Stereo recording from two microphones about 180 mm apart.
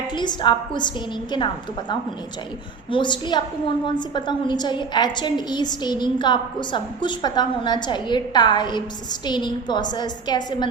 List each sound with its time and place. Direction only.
0.1 s a woman's voice: 25° left (ahead or behind)
2.9 s a woman's voice: 25° left (ahead or behind)